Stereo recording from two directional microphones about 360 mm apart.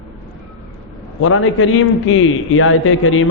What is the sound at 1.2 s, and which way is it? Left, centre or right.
A man's voice, left.